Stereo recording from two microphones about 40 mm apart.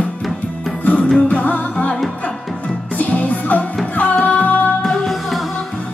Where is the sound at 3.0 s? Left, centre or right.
Left.